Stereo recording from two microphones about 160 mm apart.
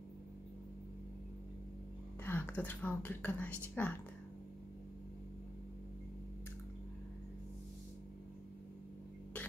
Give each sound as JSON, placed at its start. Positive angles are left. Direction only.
{"t": 2.2, "sound": "speech", "side_deg": 10}